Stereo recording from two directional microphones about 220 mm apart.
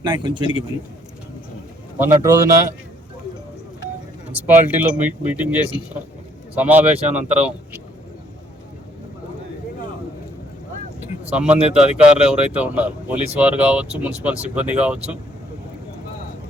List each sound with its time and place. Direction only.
0.0 s speech: 20° right (ahead or behind)
2.0 s speech: 15° right (ahead or behind)
4.4 s speech: 10° right (ahead or behind)
7.1 s speech: 30° right (ahead or behind)
11.3 s speech: 5° right (ahead or behind)